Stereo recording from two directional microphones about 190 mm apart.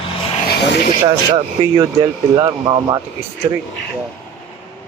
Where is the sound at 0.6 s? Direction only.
60° left (ahead or behind).